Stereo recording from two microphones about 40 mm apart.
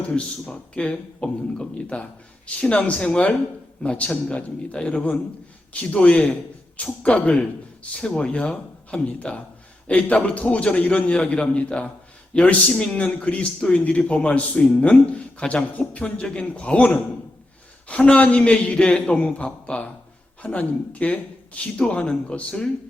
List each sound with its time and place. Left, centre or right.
0.1 s a man's voice: left
21.6 s speech: left